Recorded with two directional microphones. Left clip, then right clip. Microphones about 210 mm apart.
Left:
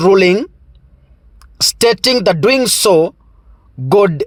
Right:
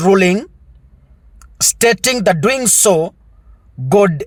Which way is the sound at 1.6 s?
20° left (ahead or behind).